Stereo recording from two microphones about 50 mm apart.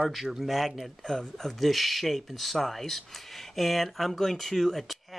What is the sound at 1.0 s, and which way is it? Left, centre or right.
Speech, centre.